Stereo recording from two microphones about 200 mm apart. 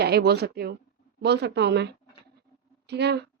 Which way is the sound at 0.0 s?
55° right (ahead or behind).